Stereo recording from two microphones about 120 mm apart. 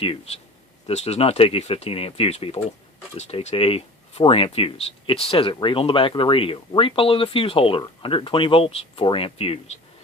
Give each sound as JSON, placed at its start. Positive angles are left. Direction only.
{"t": 0.0, "sound": "speech", "side_deg": 50}
{"t": 3.2, "sound": "speech", "side_deg": 65}